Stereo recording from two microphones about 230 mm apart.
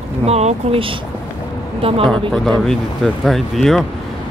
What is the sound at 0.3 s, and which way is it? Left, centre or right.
Speech, right.